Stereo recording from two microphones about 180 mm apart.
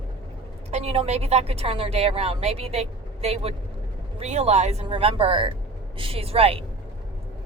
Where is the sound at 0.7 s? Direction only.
35° right (ahead or behind).